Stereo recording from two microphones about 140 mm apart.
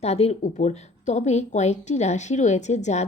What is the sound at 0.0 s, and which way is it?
Speech, 50° left (ahead or behind).